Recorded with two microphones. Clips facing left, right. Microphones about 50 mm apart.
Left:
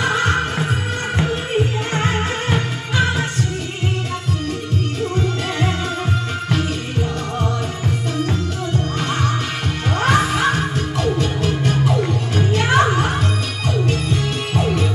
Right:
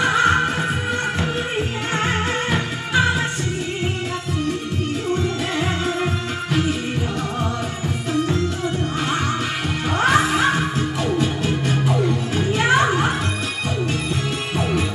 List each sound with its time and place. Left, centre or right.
0.1 s music: centre
2.9 s music: centre
9.0 s music: centre